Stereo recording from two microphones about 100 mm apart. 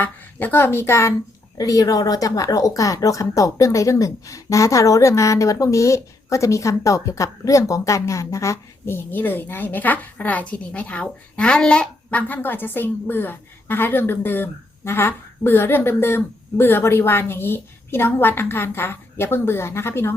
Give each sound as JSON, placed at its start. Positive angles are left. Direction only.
{"t": 0.0, "sound": "a woman's voice", "side_deg": 20}
{"t": 1.5, "sound": "speech", "side_deg": 35}